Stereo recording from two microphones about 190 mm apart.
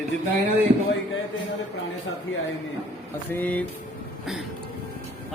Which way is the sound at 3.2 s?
10° left (ahead or behind).